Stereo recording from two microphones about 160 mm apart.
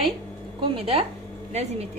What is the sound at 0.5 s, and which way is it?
Speech, 35° right (ahead or behind).